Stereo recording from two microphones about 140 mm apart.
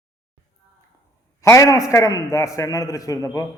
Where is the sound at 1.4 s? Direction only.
25° left (ahead or behind).